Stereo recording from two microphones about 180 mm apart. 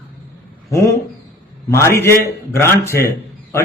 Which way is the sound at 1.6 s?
15° left (ahead or behind).